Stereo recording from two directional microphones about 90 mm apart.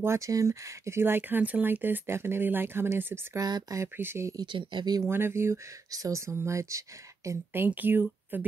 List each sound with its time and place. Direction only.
0.0 s speech: 35° right (ahead or behind)
3.3 s speech: 45° right (ahead or behind)
3.8 s speech: 25° right (ahead or behind)
4.5 s speech: 60° right (ahead or behind)
5.0 s speech: 25° right (ahead or behind)
5.9 s speech: 40° right (ahead or behind)
7.2 s speech: 25° right (ahead or behind)